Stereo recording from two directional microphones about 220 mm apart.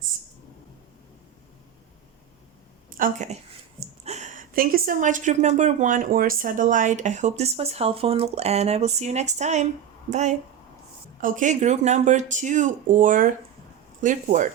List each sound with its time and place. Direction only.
2.9 s a woman's voice: 35° right (ahead or behind)